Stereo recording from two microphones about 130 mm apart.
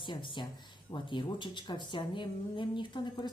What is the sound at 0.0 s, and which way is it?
Speech, 40° left (ahead or behind).